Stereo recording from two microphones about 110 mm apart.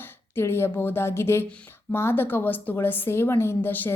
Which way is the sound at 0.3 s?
25° left (ahead or behind).